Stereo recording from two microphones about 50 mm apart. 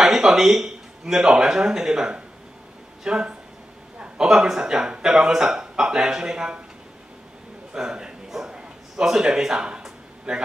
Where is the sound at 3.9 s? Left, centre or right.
Right.